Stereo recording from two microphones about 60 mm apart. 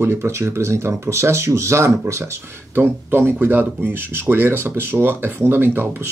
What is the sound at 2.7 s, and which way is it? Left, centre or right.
Speech, right.